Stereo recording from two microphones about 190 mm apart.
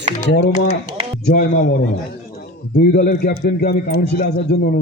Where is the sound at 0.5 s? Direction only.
40° left (ahead or behind).